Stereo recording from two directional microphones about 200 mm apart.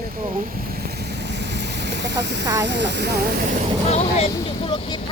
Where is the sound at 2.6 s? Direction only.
60° right (ahead or behind).